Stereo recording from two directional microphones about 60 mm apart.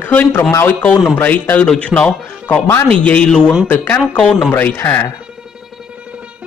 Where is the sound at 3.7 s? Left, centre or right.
Left.